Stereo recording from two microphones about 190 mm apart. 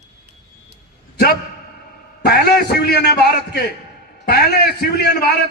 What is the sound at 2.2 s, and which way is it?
A man's voice, 55° left (ahead or behind).